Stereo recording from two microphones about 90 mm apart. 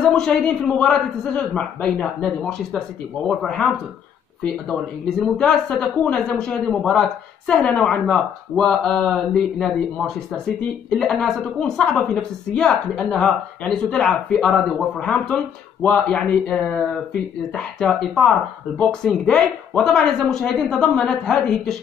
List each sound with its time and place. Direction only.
0.0 s a woman's voice: 5° left (ahead or behind)
5.2 s a woman's voice: 5° left (ahead or behind)